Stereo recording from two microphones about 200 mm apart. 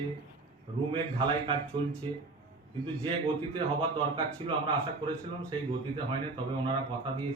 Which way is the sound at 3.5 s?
25° right (ahead or behind).